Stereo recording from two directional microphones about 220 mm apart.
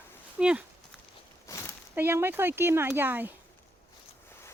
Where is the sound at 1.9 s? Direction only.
10° right (ahead or behind).